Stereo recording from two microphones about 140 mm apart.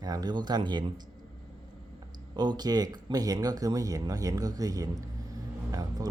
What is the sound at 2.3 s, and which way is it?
A man's voice, 30° right (ahead or behind).